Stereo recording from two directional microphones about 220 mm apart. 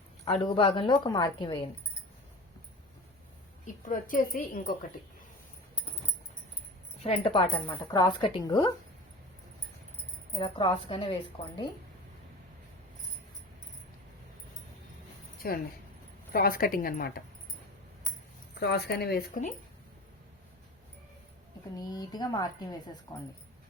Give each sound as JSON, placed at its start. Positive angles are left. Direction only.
{"t": 0.3, "sound": "a woman's voice", "side_deg": 25}
{"t": 3.8, "sound": "a woman's voice", "side_deg": 35}
{"t": 7.0, "sound": "a woman's voice", "side_deg": 25}
{"t": 10.3, "sound": "a woman's voice", "side_deg": 20}
{"t": 15.4, "sound": "a woman's voice", "side_deg": 45}
{"t": 18.6, "sound": "speech", "side_deg": 50}
{"t": 21.8, "sound": "a woman's voice", "side_deg": 15}